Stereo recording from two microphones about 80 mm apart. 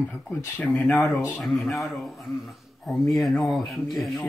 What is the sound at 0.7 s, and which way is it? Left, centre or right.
Speech, centre.